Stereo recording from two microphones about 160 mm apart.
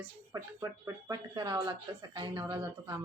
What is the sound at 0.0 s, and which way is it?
Speech, 20° right (ahead or behind).